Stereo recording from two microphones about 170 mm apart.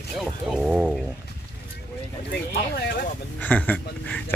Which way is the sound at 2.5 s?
65° left (ahead or behind).